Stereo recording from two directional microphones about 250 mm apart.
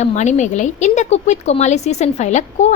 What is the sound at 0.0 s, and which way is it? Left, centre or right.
A woman's voice, left.